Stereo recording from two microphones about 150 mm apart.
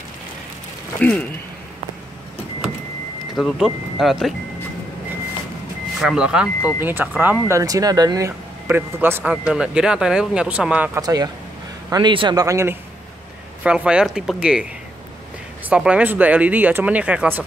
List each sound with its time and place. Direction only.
1.0 s speech: 10° left (ahead or behind)
3.3 s speech: centre (ahead or behind)
5.9 s speech: 5° right (ahead or behind)
11.0 s a man's voice: 25° right (ahead or behind)
13.7 s speech: 5° right (ahead or behind)
15.7 s speech: 10° right (ahead or behind)